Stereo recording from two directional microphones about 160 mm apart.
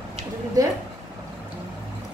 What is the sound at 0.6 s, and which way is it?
Speech, 25° right (ahead or behind).